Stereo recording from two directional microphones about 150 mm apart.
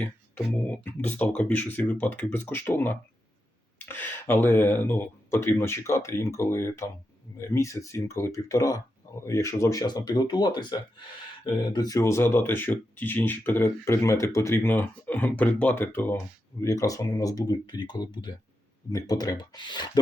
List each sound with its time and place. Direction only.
0.0 s speech: 10° left (ahead or behind); by 20.0 s 30° left (ahead or behind)